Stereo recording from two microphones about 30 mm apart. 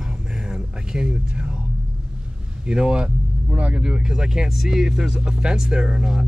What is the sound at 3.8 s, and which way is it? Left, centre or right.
Speech, right.